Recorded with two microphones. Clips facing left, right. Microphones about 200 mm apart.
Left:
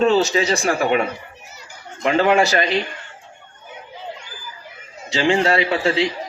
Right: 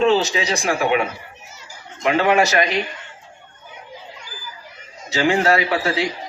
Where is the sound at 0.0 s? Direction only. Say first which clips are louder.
Left 1 dB; 40° left (ahead or behind).